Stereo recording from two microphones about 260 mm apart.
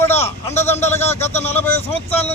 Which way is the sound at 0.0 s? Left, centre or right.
Centre.